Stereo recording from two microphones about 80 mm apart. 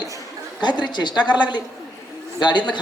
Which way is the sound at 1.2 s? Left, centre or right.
Centre.